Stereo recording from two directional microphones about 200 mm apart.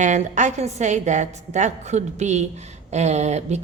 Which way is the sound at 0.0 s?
35° right (ahead or behind).